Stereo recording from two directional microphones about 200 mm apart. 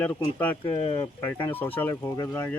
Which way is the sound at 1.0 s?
10° left (ahead or behind).